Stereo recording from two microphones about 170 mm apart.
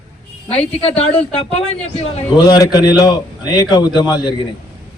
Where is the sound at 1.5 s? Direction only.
35° left (ahead or behind).